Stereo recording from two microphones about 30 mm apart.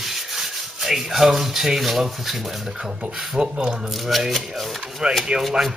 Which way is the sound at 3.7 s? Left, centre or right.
Centre.